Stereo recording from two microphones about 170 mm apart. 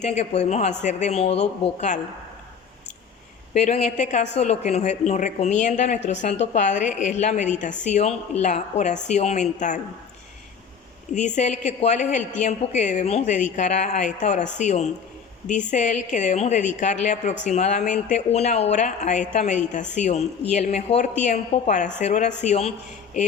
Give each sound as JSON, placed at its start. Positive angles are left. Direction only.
{"t": 0.0, "sound": "speech", "side_deg": 40}
{"t": 3.5, "sound": "speech", "side_deg": 45}
{"t": 11.1, "sound": "speech", "side_deg": 45}